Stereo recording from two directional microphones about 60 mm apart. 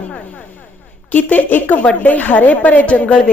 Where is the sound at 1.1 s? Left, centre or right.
Left.